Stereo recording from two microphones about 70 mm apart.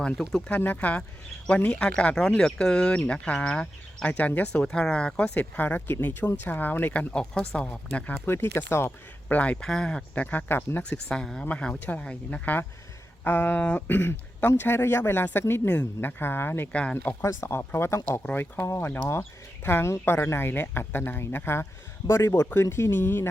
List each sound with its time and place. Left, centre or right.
0.0 s speech: centre
0.6 s speech: left
7.1 s speech: centre
8.5 s speech: left
9.3 s speech: centre
10.2 s speech: left
10.8 s speech: centre; by 13.6 s left
13.6 s speech: centre
13.8 s speech: left
16.7 s speech: left
17.2 s speech: left